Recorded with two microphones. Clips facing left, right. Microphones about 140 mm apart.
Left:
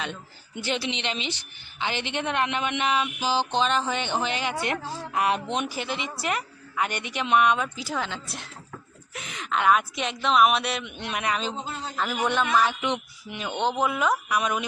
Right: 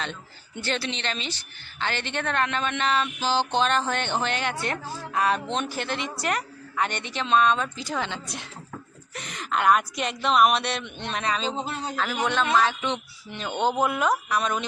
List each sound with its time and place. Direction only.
0.0 s speech: 10° left (ahead or behind)
4.6 s speech: 15° left (ahead or behind)
11.6 s a man's voice: 70° right (ahead or behind)
11.9 s speech: 10° left (ahead or behind)
13.5 s speech: 5° right (ahead or behind)
14.3 s speech: 10° left (ahead or behind)